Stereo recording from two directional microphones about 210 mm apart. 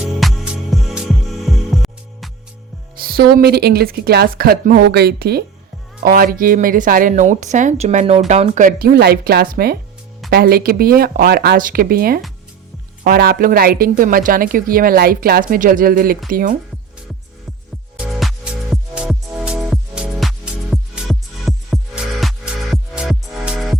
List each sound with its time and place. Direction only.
0.2 s music: centre (ahead or behind)
3.0 s a woman's voice: 45° right (ahead or behind)
17.9 s music: centre (ahead or behind)